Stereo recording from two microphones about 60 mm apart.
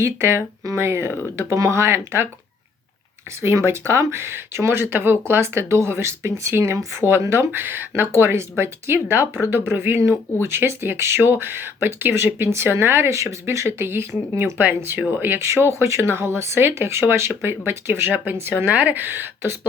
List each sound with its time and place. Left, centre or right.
0.0 s speech: right
3.4 s speech: right
14.6 s speech: right
18.6 s speech: right